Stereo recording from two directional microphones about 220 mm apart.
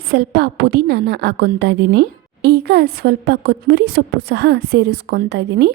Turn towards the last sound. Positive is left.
turn(degrees=-50)  # may be behind; listen again after turning